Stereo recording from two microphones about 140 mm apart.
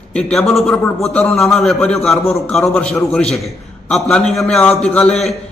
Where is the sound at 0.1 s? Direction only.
5° left (ahead or behind).